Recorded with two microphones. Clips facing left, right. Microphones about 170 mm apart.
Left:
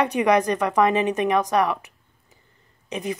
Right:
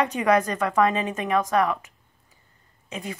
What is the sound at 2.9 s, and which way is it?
Speech, 15° left (ahead or behind).